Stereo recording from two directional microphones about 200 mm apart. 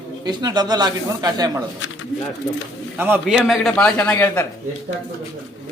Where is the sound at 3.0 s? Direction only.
10° right (ahead or behind); by 4.4 s 10° left (ahead or behind).